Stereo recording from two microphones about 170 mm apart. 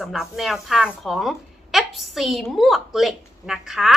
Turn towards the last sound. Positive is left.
turn(degrees=-5)  # may be behind; listen again after turning